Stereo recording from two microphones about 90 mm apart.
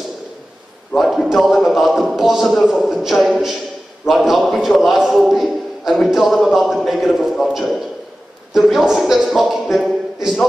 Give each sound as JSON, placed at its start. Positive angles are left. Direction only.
{"t": 0.9, "sound": "a man's voice", "side_deg": 0}